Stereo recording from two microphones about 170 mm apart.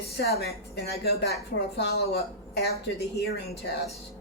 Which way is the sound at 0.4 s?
70° left (ahead or behind).